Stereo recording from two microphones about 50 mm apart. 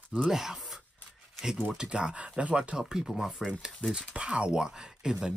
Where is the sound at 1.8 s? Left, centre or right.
Centre.